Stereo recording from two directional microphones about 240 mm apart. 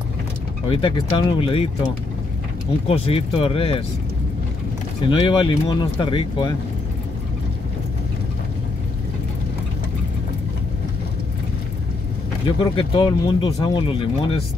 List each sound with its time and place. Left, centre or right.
0.7 s speech: left
2.9 s speech: left
5.0 s speech: left
12.4 s speech: left